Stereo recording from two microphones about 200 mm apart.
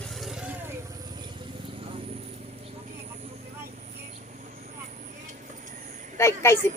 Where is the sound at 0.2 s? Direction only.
Centre (ahead or behind).